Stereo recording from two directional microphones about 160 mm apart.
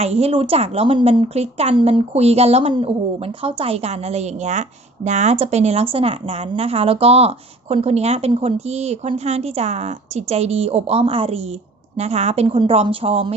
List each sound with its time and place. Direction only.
0.0 s speech: 40° right (ahead or behind)